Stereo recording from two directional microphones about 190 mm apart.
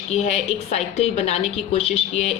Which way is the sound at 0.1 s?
35° left (ahead or behind).